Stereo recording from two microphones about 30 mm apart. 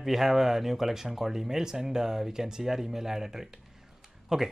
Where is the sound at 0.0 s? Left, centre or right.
Centre.